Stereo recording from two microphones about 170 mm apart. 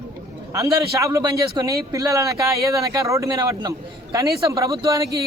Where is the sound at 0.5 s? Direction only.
20° right (ahead or behind).